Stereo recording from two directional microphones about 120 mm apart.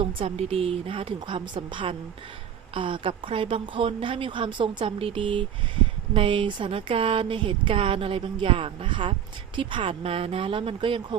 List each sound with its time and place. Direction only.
0.0 s speech: 50° right (ahead or behind)